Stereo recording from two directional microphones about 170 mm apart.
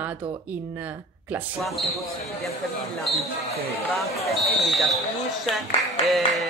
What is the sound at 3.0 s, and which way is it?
Speech, centre (ahead or behind).